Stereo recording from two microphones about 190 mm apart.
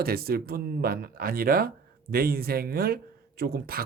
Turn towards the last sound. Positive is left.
turn(degrees=-50)  # may be behind; listen again after turning